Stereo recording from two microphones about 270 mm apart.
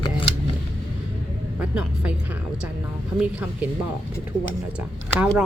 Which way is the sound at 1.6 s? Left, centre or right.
Centre.